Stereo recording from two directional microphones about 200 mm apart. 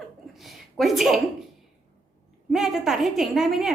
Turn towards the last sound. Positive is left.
turn(degrees=0)  # may be behind; listen again after turning